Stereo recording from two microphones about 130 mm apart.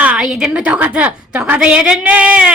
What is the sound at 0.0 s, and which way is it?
A woman's voice, 5° right (ahead or behind).